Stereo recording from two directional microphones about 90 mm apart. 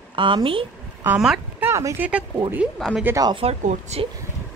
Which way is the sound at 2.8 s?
5° left (ahead or behind).